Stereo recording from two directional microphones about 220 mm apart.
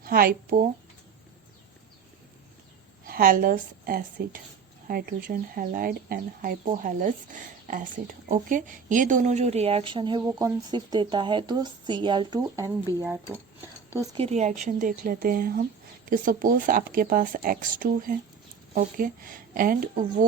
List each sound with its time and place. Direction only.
0.0 s speech: 45° right (ahead or behind)
3.1 s a woman's voice: 40° right (ahead or behind); by 13.4 s 10° right (ahead or behind)
14.2 s speech: 30° right (ahead or behind)